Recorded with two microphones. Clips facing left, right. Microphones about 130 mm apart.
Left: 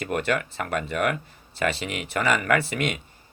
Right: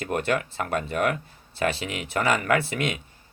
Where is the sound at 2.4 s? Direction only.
55° left (ahead or behind).